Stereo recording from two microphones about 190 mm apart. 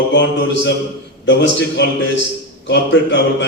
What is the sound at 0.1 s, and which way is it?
A man's voice, 70° left (ahead or behind).